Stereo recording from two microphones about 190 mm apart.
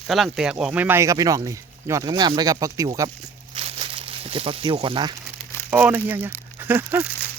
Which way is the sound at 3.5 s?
30° right (ahead or behind).